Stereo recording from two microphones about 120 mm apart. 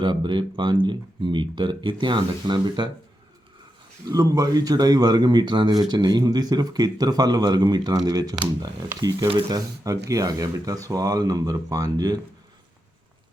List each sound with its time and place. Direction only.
0.0 s speech: 40° right (ahead or behind)
4.1 s speech: 30° right (ahead or behind)